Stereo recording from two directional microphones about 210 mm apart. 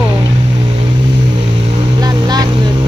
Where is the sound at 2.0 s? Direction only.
20° right (ahead or behind).